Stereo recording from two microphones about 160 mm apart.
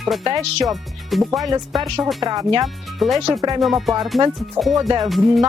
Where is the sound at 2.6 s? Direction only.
Centre (ahead or behind).